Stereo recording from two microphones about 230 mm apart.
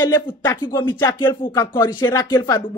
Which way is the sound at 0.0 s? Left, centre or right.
Centre.